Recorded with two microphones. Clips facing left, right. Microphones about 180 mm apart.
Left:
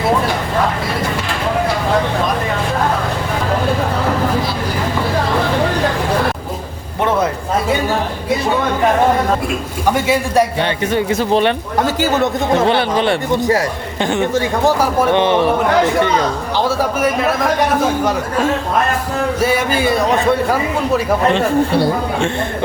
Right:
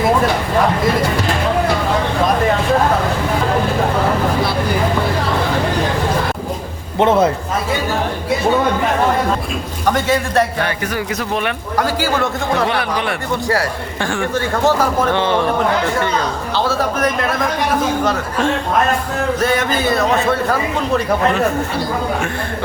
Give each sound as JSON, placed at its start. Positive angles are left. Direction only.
{"t": 9.8, "sound": "a sound", "side_deg": 10}
{"t": 10.6, "sound": "a man's voice", "side_deg": 25}
{"t": 16.6, "sound": "a man's voice", "side_deg": 10}